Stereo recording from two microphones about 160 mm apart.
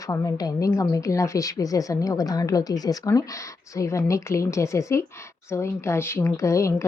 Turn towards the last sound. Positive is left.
turn(degrees=20)  # may be behind; listen again after turning